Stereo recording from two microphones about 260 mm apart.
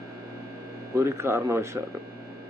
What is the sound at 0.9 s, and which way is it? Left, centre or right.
Speech, centre.